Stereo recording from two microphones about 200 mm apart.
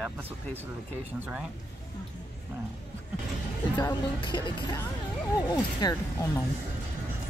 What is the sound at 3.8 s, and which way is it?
Speech, 20° left (ahead or behind).